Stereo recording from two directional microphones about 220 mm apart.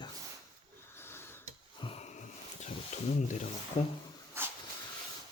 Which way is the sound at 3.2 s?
35° left (ahead or behind).